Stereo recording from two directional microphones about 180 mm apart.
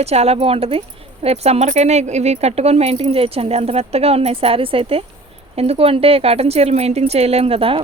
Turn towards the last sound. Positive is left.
turn(degrees=-30)  # may be behind; listen again after turning